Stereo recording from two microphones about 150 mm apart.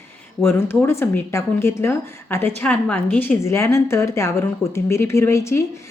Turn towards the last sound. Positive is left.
turn(degrees=20)  # may be behind; listen again after turning